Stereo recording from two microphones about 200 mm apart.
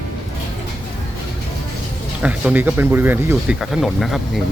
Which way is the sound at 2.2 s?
5° right (ahead or behind).